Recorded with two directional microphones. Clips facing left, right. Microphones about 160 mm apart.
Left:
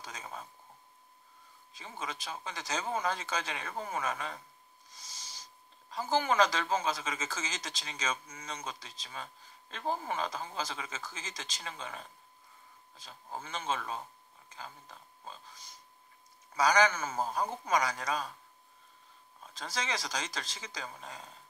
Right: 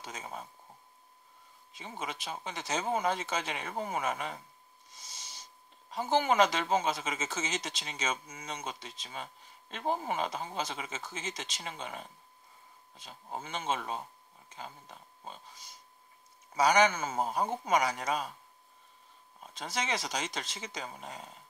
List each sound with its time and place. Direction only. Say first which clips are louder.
0.0 s a sound: right 2 dB; 20° right (ahead or behind)
1.8 s speech: right 2 dB; 20° right (ahead or behind)
4.9 s a sound: even; 25° right (ahead or behind)
5.9 s speech: right 2 dB; 20° right (ahead or behind)
16.5 s speech: right 2 dB; 25° right (ahead or behind)
19.4 s speech: right 2 dB; 20° right (ahead or behind)